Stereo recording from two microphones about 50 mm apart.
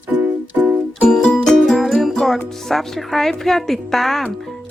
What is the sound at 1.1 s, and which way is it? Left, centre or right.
Music, centre.